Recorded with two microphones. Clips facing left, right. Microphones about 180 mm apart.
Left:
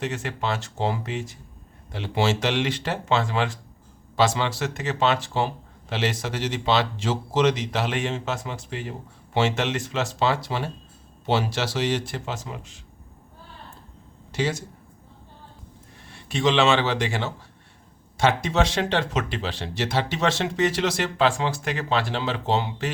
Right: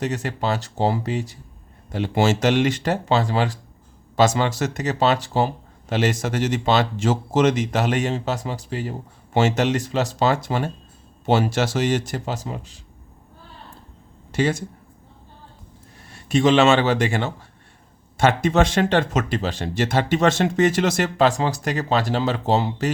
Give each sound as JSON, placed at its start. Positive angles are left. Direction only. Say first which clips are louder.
{"t": 0.0, "sound": "speech", "louder": "right 4 dB", "side_deg": -40}
{"t": 14.3, "sound": "speech", "louder": "right 5 dB", "side_deg": -50}
{"t": 16.1, "sound": "speech", "louder": "right 5 dB", "side_deg": -45}